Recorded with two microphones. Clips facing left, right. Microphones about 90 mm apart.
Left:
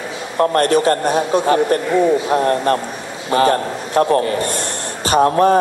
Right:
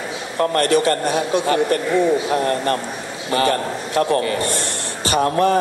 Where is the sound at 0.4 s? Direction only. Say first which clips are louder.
Left 3 dB; 40° left (ahead or behind).